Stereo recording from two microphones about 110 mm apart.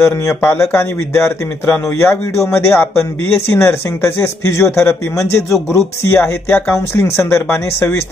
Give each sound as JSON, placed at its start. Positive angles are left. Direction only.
{"t": 0.6, "sound": "speech", "side_deg": 25}